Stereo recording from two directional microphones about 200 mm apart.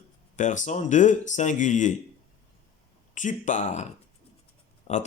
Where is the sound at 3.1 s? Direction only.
40° left (ahead or behind).